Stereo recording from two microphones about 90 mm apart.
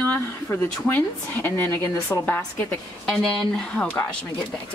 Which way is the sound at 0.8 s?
20° left (ahead or behind).